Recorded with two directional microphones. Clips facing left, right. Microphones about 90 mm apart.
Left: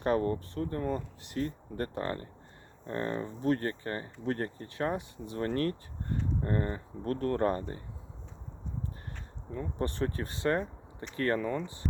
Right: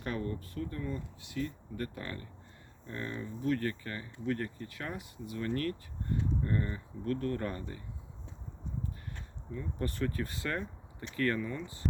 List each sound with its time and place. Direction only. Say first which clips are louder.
0.0 s speech: left 8 dB; 40° left (ahead or behind)
9.5 s speech: left 3 dB; 45° left (ahead or behind)
9.8 s speech: left 2 dB; 30° left (ahead or behind)
11.3 s speech: left 5 dB; 45° left (ahead or behind)